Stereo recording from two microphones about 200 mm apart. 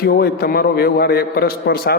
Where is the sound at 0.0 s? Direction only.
50° left (ahead or behind).